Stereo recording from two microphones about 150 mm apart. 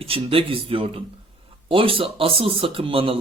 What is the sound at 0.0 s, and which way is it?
Speech, 40° right (ahead or behind).